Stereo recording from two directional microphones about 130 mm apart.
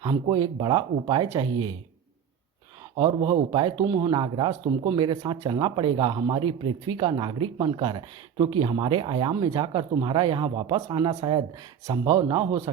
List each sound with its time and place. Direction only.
0.0 s speech: 35° right (ahead or behind)
3.0 s speech: 40° right (ahead or behind)
12.7 s speech: 40° right (ahead or behind)